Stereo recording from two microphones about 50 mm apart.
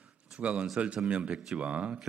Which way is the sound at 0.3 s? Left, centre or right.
Right.